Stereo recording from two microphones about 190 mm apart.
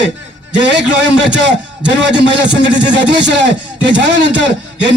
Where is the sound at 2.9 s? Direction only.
70° right (ahead or behind).